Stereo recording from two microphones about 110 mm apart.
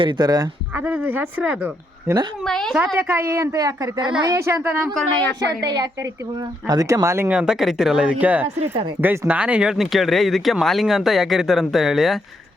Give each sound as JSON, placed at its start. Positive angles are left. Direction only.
{"t": 0.0, "sound": "a woman's voice", "side_deg": -40}
{"t": 0.7, "sound": "speech", "side_deg": -15}
{"t": 2.4, "sound": "speech", "side_deg": 5}
{"t": 2.9, "sound": "speech", "side_deg": -25}
{"t": 5.5, "sound": "a woman's voice", "side_deg": -40}
{"t": 7.3, "sound": "speech", "side_deg": -10}
{"t": 8.6, "sound": "speech", "side_deg": -70}
{"t": 9.0, "sound": "speech", "side_deg": -15}